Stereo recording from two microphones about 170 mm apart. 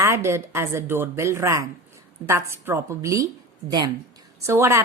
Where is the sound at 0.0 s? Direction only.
15° right (ahead or behind).